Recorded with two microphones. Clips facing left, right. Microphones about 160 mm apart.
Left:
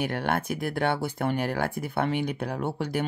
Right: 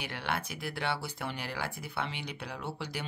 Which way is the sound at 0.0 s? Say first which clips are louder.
Left 9 dB; 50° left (ahead or behind).